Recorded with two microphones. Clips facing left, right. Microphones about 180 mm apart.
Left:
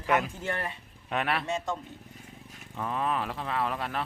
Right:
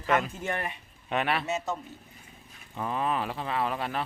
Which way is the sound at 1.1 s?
Centre (ahead or behind).